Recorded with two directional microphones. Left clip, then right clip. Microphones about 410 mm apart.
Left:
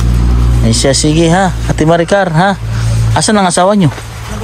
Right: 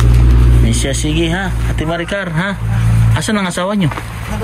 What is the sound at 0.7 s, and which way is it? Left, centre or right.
Speech, centre.